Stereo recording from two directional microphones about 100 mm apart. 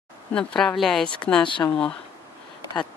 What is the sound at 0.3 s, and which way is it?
Speech, 10° left (ahead or behind).